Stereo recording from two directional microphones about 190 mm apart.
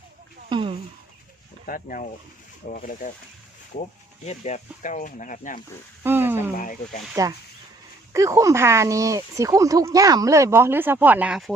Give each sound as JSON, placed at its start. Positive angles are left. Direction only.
{"t": 0.5, "sound": "speech", "side_deg": -25}
{"t": 1.6, "sound": "speech", "side_deg": 45}
{"t": 4.3, "sound": "speech", "side_deg": 35}
{"t": 6.0, "sound": "a sound", "side_deg": -10}
{"t": 6.6, "sound": "speech", "side_deg": 45}
{"t": 8.1, "sound": "speech", "side_deg": -15}